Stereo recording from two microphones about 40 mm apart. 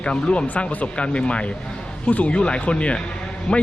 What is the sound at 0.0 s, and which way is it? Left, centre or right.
Speech, left.